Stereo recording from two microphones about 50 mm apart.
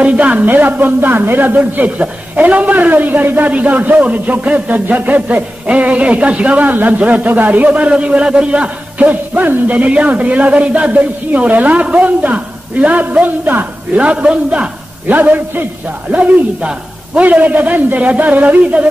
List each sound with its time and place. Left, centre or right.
0.0 s a sound: right
0.5 s a man's voice: right
15.1 s a man's voice: right
16.1 s a man's voice: right